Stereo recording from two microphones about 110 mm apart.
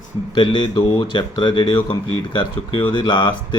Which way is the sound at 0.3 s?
50° left (ahead or behind).